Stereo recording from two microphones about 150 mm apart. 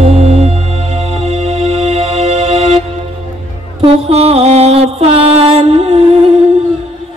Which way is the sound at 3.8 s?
40° right (ahead or behind).